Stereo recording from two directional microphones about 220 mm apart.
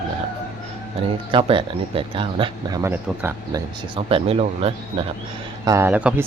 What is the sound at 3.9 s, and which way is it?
Speech, 25° right (ahead or behind).